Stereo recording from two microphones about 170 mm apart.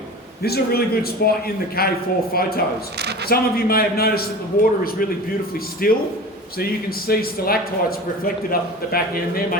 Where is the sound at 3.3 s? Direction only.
65° left (ahead or behind).